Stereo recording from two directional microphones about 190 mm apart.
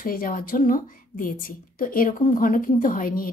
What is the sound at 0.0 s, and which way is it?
A woman's voice, 50° left (ahead or behind).